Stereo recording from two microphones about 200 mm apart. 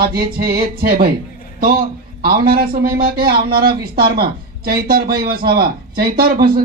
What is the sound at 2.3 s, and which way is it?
Speech, 50° right (ahead or behind).